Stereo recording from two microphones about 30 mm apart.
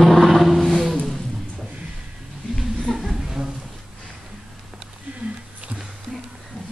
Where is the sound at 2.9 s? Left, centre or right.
Centre.